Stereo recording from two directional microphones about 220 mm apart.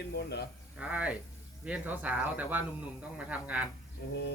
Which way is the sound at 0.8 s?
5° right (ahead or behind).